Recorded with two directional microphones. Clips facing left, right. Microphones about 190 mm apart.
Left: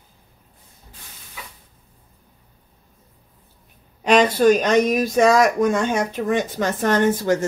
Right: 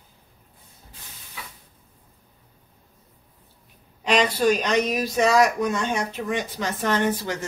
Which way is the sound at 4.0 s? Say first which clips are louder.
Left 5 dB; 50° left (ahead or behind).